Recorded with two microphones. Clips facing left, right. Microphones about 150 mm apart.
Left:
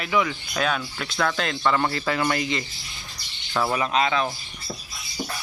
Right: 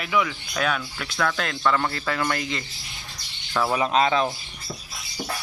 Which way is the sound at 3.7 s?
5° right (ahead or behind).